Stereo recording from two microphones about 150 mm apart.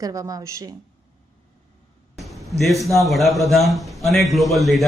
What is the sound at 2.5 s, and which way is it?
A man's voice, centre (ahead or behind).